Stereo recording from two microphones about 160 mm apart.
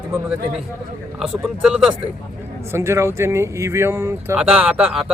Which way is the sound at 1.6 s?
5° right (ahead or behind).